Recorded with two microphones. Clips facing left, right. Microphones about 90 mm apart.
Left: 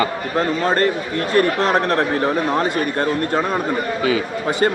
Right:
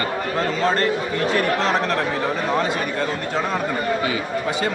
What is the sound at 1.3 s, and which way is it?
Speech, 50° left (ahead or behind).